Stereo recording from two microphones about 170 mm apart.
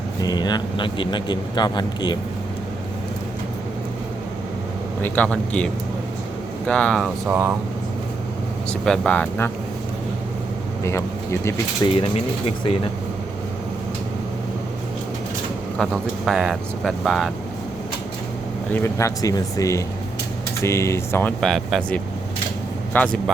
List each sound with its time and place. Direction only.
0.2 s speech: 25° left (ahead or behind)
5.0 s speech: 10° left (ahead or behind)
7.3 s speech: 15° right (ahead or behind)
8.7 s speech: 5° left (ahead or behind)
11.9 s speech: 35° left (ahead or behind)
15.8 s speech: centre (ahead or behind)
18.7 s speech: 15° left (ahead or behind)
21.4 s speech: centre (ahead or behind)